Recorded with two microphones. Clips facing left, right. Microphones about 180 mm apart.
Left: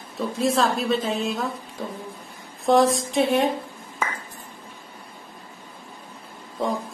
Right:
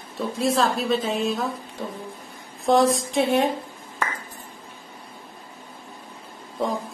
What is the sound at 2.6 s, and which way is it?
Speech, centre (ahead or behind).